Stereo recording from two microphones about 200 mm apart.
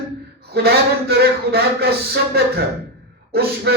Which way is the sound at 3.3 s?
55° right (ahead or behind).